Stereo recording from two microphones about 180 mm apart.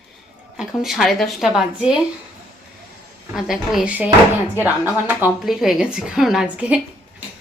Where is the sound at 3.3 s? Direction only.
Centre (ahead or behind).